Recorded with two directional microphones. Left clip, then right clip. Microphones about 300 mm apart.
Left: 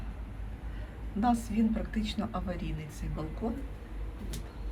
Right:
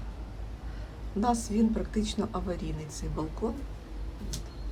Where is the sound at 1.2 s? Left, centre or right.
Centre.